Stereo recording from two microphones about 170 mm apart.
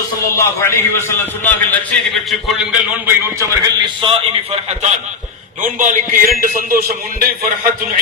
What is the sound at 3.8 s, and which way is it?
A man's voice, 30° right (ahead or behind).